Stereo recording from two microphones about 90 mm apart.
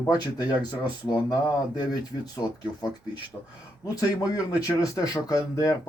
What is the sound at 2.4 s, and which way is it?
Speech, 55° left (ahead or behind).